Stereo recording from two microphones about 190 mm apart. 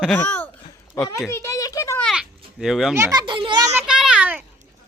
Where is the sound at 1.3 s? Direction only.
15° left (ahead or behind).